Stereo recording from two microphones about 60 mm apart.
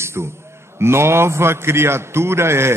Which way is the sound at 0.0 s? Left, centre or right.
Right.